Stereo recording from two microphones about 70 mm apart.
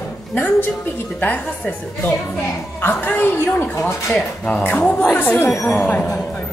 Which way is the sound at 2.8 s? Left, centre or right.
Left.